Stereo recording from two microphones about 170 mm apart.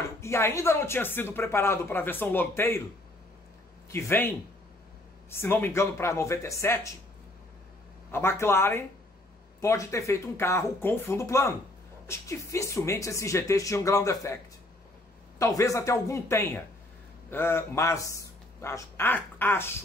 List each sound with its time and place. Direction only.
0.2 s speech: 15° left (ahead or behind)
3.9 s speech: 15° left (ahead or behind)
5.3 s speech: 15° left (ahead or behind)
8.1 s a man's voice: 15° left (ahead or behind)